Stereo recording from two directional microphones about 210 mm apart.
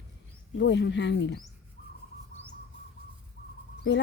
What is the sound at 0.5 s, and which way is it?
Speech, 55° left (ahead or behind).